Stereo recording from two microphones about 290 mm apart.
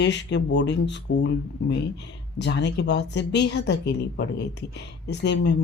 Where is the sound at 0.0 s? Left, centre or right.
Left.